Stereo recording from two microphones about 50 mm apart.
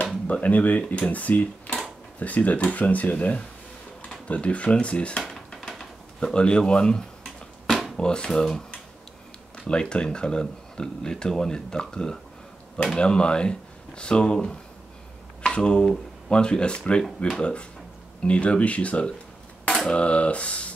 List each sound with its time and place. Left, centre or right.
0.3 s speech: left
5.3 s dishes: centre
6.1 s speech: centre